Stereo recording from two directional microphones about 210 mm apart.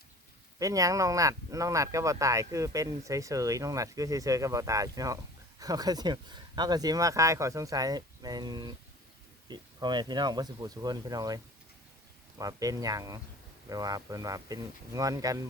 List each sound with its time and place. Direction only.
0.6 s speech: 15° right (ahead or behind)
12.4 s speech: 15° right (ahead or behind)